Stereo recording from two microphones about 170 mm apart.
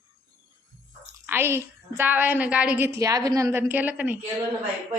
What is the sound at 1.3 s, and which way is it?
A woman's voice, 15° right (ahead or behind).